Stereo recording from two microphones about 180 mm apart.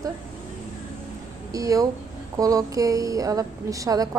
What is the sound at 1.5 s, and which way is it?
A woman's voice, 20° right (ahead or behind).